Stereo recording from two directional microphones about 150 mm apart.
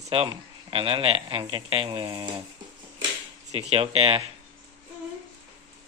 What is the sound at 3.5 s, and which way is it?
Speech, 45° right (ahead or behind).